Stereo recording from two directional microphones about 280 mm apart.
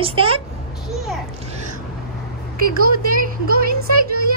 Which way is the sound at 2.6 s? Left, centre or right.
Right.